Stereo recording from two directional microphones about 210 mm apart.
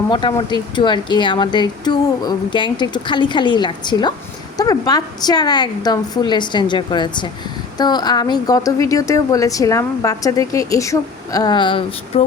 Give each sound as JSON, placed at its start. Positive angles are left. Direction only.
{"t": 0.1, "sound": "a woman's voice", "side_deg": 20}